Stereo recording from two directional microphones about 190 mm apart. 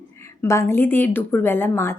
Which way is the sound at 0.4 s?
15° left (ahead or behind).